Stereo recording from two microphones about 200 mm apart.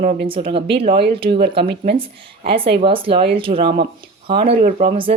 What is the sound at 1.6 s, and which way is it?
Speech, 55° right (ahead or behind).